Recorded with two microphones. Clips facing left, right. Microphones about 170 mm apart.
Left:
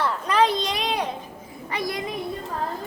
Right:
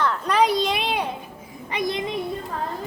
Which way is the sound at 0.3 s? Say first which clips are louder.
Right 1 dB; 5° right (ahead or behind).